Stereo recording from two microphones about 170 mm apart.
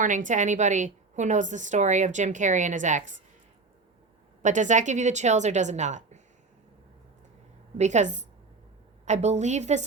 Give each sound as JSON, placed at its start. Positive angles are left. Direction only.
{"t": 0.0, "sound": "a woman's voice", "side_deg": -50}
{"t": 4.4, "sound": "a woman's voice", "side_deg": -45}
{"t": 7.8, "sound": "a woman's voice", "side_deg": -45}